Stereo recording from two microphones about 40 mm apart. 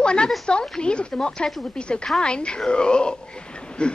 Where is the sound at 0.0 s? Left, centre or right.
Left.